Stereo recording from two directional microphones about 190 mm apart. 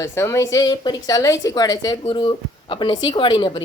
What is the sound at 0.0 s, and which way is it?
A woman's voice, 15° left (ahead or behind).